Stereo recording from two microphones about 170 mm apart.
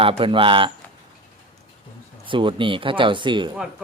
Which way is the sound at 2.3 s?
30° right (ahead or behind).